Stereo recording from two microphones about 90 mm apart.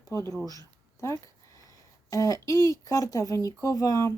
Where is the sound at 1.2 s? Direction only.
40° left (ahead or behind).